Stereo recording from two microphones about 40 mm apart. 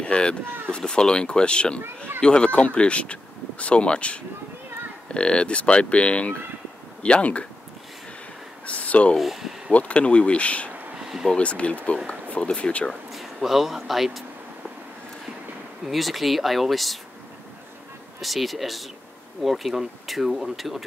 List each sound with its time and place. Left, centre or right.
0.0 s speech: left
8.6 s speech: left
9.2 s speech: centre
9.7 s speech: left
11.0 s a sound: centre
11.3 s speech: left
13.1 s speech: centre
15.8 s speech: centre
18.2 s speech: centre